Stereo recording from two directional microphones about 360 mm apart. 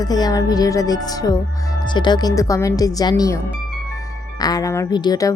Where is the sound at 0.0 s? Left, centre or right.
Centre.